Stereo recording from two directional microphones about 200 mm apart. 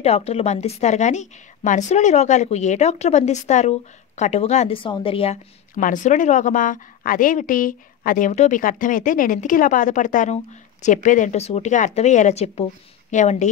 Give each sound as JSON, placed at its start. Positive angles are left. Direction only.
{"t": 0.0, "sound": "a woman's voice", "side_deg": 30}
{"t": 5.8, "sound": "a woman's voice", "side_deg": 40}